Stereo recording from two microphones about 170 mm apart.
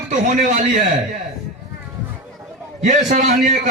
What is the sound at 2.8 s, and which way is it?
Speech, 45° right (ahead or behind).